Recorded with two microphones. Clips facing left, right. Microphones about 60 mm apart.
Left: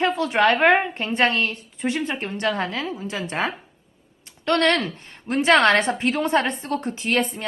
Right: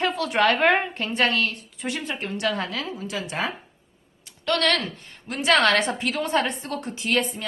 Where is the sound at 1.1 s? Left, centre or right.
Left.